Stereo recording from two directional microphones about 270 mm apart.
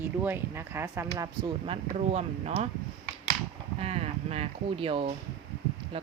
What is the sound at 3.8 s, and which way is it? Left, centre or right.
Speech, right.